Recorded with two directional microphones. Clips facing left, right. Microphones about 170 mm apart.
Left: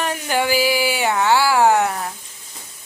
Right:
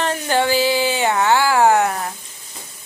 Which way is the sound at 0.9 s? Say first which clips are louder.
Right 1 dB; 20° right (ahead or behind).